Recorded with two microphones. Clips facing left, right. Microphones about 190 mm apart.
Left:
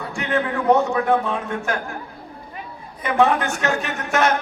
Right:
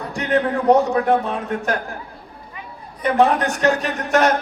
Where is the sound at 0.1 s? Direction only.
35° right (ahead or behind).